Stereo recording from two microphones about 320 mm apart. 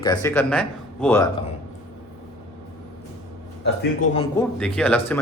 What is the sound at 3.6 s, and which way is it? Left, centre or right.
Speech, left.